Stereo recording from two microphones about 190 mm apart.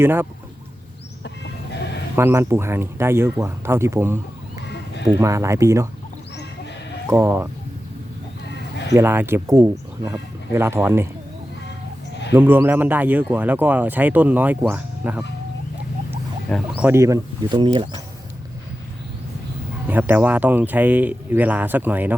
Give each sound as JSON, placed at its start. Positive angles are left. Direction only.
{"t": 0.0, "sound": "speech", "side_deg": -10}
{"t": 1.7, "sound": "a sound", "side_deg": 65}
{"t": 2.1, "sound": "speech", "side_deg": -10}
{"t": 4.6, "sound": "a sound", "side_deg": 65}
{"t": 5.0, "sound": "speech", "side_deg": -15}
{"t": 7.1, "sound": "speech", "side_deg": -10}
{"t": 8.9, "sound": "speech", "side_deg": -10}
{"t": 12.3, "sound": "speech", "side_deg": -10}
{"t": 16.5, "sound": "speech", "side_deg": 5}
{"t": 16.8, "sound": "speech", "side_deg": -15}
{"t": 19.9, "sound": "speech", "side_deg": -10}